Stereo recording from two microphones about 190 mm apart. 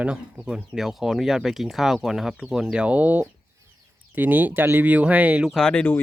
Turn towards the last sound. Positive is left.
turn(degrees=5)  # may be behind; listen again after turning